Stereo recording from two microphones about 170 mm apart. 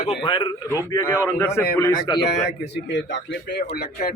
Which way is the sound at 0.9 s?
15° left (ahead or behind).